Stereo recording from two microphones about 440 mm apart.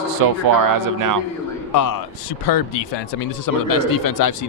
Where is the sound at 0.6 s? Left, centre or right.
Right.